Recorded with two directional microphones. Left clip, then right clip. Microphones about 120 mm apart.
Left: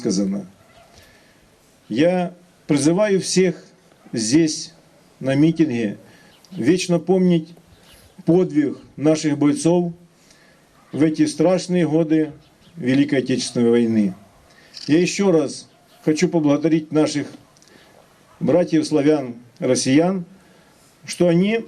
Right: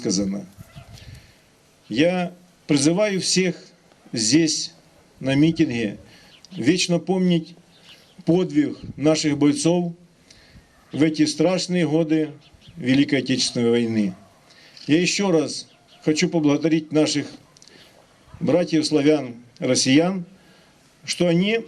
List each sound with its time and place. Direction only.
0.0 s a man's voice: 15° right (ahead or behind)
1.9 s a man's voice: 15° right (ahead or behind)
10.9 s a man's voice: 15° right (ahead or behind)